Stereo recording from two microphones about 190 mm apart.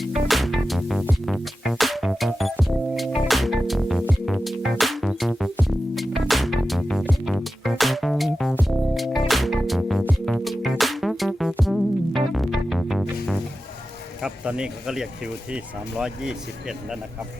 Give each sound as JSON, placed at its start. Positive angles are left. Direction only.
{"t": 0.3, "sound": "music", "side_deg": 0}
{"t": 14.2, "sound": "a sound", "side_deg": -5}
{"t": 15.5, "sound": "speech", "side_deg": -5}